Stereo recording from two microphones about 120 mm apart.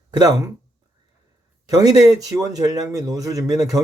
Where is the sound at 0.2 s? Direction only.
30° right (ahead or behind).